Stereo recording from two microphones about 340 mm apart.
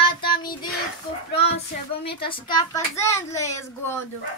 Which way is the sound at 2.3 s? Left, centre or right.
Centre.